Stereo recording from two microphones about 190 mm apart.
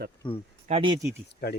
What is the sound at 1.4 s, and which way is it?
Speech, 55° left (ahead or behind).